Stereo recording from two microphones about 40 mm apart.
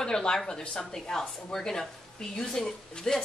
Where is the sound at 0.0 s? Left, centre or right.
Centre.